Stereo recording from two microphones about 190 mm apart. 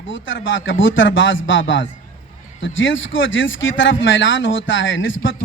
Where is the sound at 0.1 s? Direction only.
80° left.